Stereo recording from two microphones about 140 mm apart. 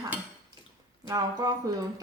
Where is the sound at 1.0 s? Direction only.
25° right (ahead or behind).